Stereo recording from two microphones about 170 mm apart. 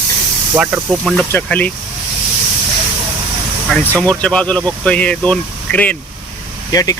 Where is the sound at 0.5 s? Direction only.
10° right (ahead or behind).